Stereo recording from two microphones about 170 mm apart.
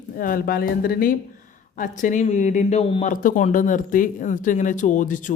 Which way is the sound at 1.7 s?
50° left (ahead or behind).